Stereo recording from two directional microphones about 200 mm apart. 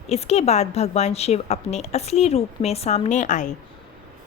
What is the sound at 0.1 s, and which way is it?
A woman's voice, 30° left (ahead or behind).